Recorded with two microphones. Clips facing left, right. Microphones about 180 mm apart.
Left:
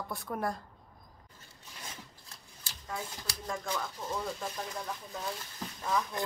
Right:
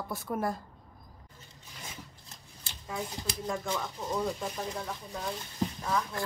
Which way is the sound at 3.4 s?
5° right (ahead or behind).